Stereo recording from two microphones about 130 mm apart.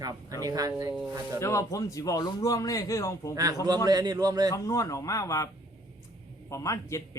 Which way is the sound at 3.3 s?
30° right (ahead or behind).